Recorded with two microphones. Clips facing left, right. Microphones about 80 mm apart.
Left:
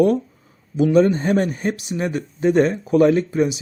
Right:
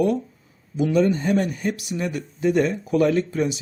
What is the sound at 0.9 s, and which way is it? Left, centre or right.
Speech, left.